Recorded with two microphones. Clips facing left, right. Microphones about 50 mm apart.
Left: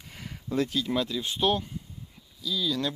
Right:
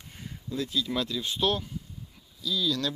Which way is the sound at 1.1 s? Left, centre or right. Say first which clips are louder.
Left 2 dB; left.